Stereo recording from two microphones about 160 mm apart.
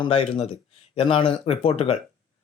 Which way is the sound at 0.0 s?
40° left (ahead or behind).